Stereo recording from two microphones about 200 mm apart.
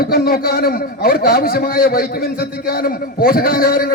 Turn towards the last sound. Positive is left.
turn(degrees=45)  # may be behind; listen again after turning